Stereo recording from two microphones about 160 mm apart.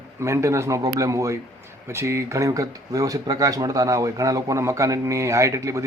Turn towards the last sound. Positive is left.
turn(degrees=-20)  # may be behind; listen again after turning